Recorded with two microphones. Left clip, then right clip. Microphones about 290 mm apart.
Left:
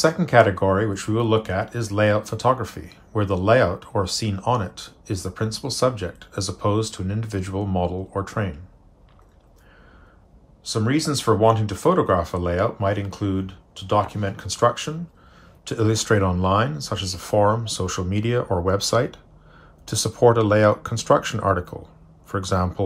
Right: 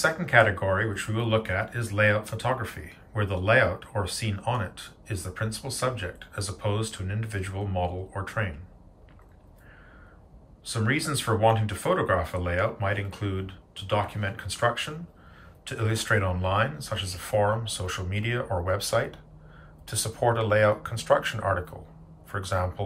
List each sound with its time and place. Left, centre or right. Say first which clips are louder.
0.0 s speech: left 5 dB; centre
10.6 s speech: left 5 dB; centre